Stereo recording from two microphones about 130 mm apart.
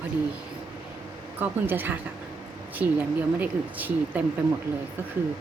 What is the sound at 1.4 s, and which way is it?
Speech, 15° right (ahead or behind).